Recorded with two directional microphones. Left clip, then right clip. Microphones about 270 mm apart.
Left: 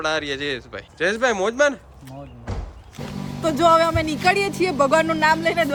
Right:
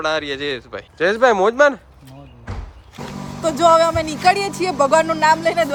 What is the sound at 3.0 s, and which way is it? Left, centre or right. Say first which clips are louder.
Wild animals: right 2 dB; centre.